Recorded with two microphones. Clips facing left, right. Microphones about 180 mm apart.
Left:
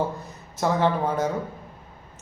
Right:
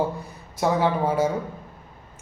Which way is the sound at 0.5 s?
10° right (ahead or behind).